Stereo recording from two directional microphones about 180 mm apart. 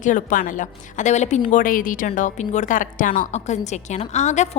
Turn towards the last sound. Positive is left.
turn(degrees=40)  # may be behind; listen again after turning